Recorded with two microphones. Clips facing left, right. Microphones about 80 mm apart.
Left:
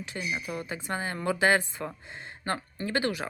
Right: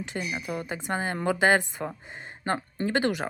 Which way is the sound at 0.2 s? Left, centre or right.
Right.